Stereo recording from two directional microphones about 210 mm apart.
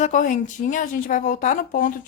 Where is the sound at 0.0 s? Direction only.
40° left (ahead or behind).